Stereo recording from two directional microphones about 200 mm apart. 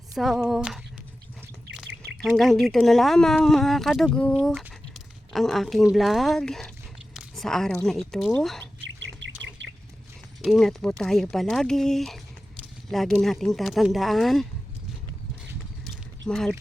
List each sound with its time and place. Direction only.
0.1 s speech: centre (ahead or behind)
2.2 s speech: centre (ahead or behind)
8.8 s bird: 65° right (ahead or behind)
10.4 s speech: centre (ahead or behind)
15.8 s a sound: centre (ahead or behind)